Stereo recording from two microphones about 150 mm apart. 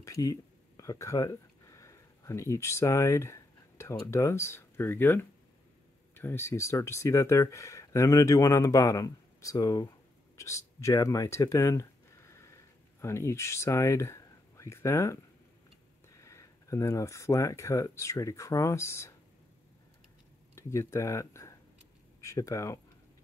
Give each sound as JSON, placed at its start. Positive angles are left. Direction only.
{"t": 0.0, "sound": "speech", "side_deg": 25}
{"t": 20.5, "sound": "speech", "side_deg": 20}